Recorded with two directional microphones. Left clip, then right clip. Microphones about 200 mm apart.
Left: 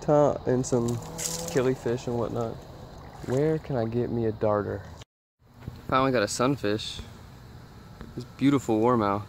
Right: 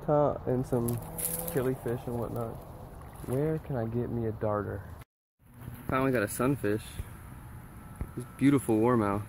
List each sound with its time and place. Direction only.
0.0 s speech: 20° left (ahead or behind)
5.9 s speech: 10° left (ahead or behind)
8.4 s speech: 5° left (ahead or behind)